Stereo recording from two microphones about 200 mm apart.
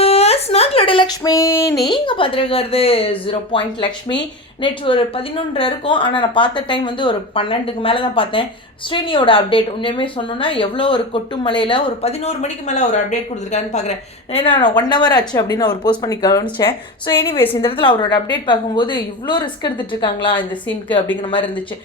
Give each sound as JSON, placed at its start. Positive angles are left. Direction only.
{"t": 0.0, "sound": "a sound", "side_deg": 30}
{"t": 1.8, "sound": "speech", "side_deg": 25}
{"t": 14.3, "sound": "speech", "side_deg": 25}